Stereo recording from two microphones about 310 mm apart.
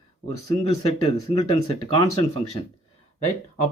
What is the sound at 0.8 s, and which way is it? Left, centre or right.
Speech, centre.